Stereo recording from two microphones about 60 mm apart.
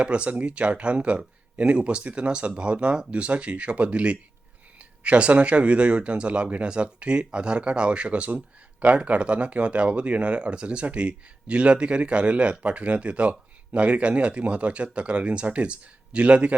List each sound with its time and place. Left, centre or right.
0.0 s speech: centre